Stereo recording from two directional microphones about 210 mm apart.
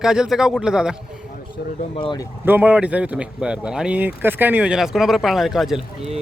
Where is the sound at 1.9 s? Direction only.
25° left (ahead or behind).